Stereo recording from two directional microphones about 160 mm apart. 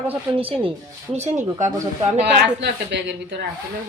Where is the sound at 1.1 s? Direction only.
45° right (ahead or behind).